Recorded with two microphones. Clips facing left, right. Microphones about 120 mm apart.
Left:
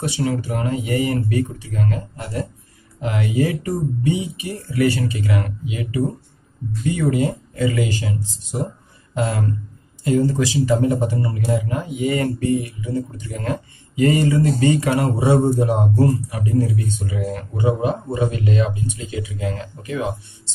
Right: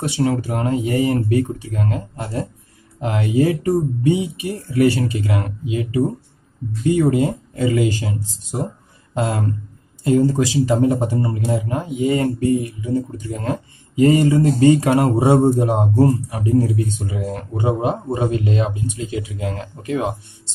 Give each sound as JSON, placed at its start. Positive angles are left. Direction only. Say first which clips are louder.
{"t": 0.0, "sound": "speech", "louder": "right 3 dB", "side_deg": -50}
{"t": 10.1, "sound": "speech", "louder": "right 2 dB", "side_deg": -45}
{"t": 10.6, "sound": "speech", "louder": "right 1 dB", "side_deg": -30}
{"t": 12.1, "sound": "speech", "louder": "right 2 dB", "side_deg": -25}
{"t": 14.4, "sound": "speech", "louder": "right 4 dB", "side_deg": -40}